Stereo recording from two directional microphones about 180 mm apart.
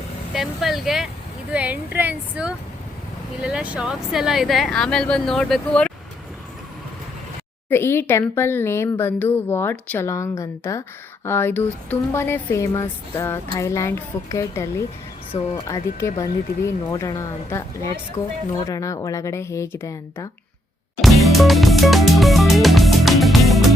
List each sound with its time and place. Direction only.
0.3 s speech: centre (ahead or behind)
7.7 s speech: 10° left (ahead or behind)
21.0 s music: centre (ahead or behind)